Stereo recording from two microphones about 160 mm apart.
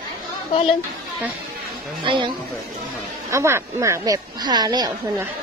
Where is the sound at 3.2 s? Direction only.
15° right (ahead or behind).